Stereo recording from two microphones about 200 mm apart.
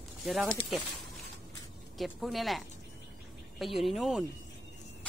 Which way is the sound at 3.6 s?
Centre (ahead or behind).